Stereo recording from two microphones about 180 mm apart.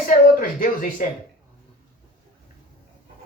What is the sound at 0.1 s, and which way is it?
Speech, 50° left (ahead or behind).